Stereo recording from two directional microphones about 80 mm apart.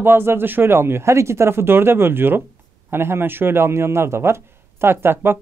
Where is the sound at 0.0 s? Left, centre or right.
Right.